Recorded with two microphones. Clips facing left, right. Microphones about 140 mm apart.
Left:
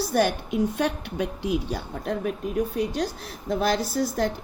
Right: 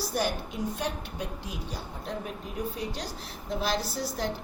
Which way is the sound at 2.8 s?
55° left (ahead or behind).